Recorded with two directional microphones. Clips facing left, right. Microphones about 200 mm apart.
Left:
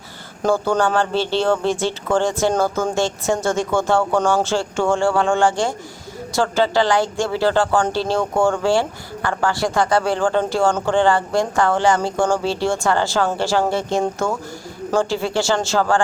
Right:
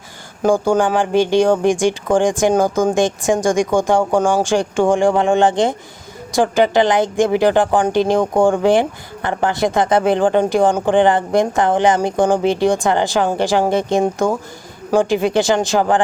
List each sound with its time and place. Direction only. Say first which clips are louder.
0.4 s speech: right 3 dB; 10° right (ahead or behind)